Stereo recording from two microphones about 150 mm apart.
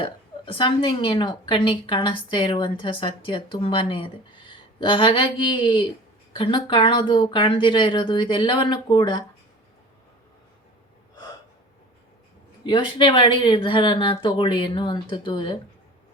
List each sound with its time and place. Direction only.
0.0 s a woman's voice: 35° left (ahead or behind)
12.6 s a woman's voice: 35° left (ahead or behind)